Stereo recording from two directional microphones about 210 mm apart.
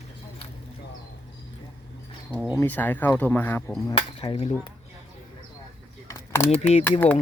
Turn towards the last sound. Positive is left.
turn(degrees=10)  # may be behind; listen again after turning